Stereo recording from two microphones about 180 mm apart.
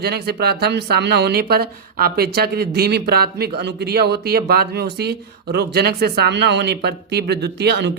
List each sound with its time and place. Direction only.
0.0 s speech: 60° right (ahead or behind)